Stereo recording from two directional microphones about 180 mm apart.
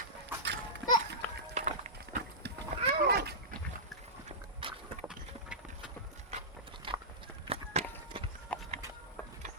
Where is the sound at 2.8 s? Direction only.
65° right (ahead or behind).